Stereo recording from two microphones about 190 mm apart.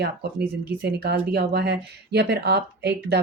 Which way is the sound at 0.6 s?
55° right (ahead or behind).